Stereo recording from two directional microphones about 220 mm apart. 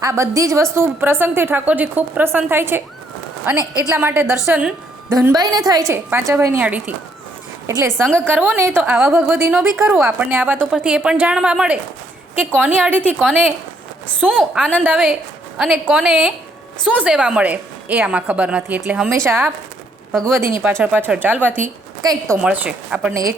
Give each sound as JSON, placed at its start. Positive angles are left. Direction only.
{"t": 0.0, "sound": "a woman's voice", "side_deg": -15}
{"t": 3.9, "sound": "a woman's voice", "side_deg": -10}
{"t": 8.0, "sound": "a woman's voice", "side_deg": 5}
{"t": 8.3, "sound": "a woman's voice", "side_deg": -10}
{"t": 13.1, "sound": "a woman's voice", "side_deg": 5}
{"t": 20.6, "sound": "a woman's voice", "side_deg": -10}
{"t": 22.4, "sound": "a woman's voice", "side_deg": -5}